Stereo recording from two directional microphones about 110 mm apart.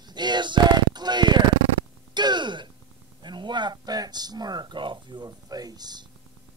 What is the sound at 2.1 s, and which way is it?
Gasp, 40° right (ahead or behind).